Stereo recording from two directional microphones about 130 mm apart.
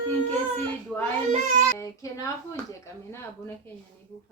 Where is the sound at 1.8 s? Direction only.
25° left (ahead or behind).